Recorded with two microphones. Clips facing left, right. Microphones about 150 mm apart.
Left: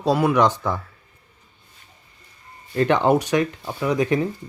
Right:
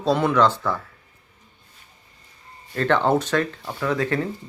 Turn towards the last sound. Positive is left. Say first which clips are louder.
# left 3 dB
turn(degrees=15)  # may be behind; listen again after turning